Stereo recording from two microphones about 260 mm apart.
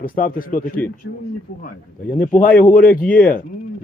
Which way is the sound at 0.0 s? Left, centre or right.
Left.